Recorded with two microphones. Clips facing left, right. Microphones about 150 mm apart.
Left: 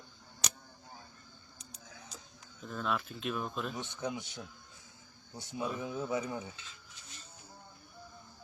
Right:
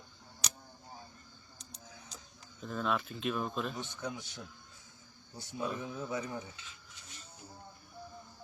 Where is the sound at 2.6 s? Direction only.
Centre (ahead or behind).